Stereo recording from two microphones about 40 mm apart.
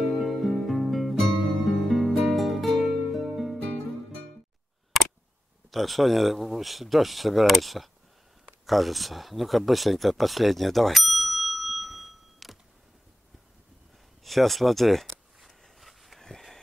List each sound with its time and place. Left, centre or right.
0.0 s music: centre
5.7 s speech: centre
14.2 s a sound: centre